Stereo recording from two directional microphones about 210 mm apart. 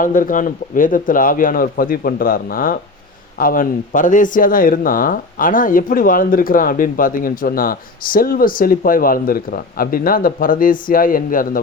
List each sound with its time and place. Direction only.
0.0 s speech: 40° left (ahead or behind)